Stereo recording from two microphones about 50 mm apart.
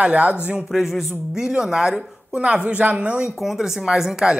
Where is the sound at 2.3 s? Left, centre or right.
Right.